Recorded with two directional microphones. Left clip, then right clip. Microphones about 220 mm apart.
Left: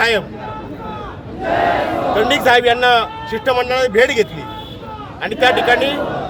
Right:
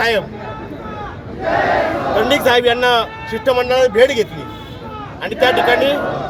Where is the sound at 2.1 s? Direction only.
5° left (ahead or behind).